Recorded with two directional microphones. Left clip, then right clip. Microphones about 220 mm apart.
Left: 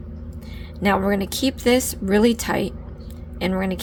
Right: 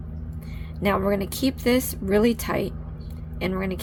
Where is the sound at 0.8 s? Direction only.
15° left (ahead or behind).